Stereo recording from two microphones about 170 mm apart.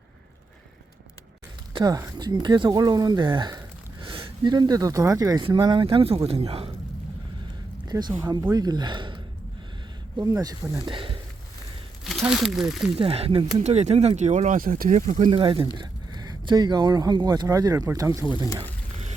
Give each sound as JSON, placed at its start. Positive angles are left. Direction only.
{"t": 1.7, "sound": "speech", "side_deg": -25}
{"t": 7.9, "sound": "speech", "side_deg": -25}
{"t": 12.0, "sound": "speech", "side_deg": 0}
{"t": 13.0, "sound": "speech", "side_deg": -35}
{"t": 15.0, "sound": "speech", "side_deg": -30}